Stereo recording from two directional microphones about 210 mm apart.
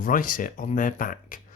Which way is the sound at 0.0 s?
40° left (ahead or behind).